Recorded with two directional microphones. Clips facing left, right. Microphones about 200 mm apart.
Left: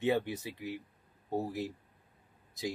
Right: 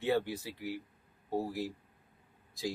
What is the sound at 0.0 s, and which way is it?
Speech, 20° left (ahead or behind).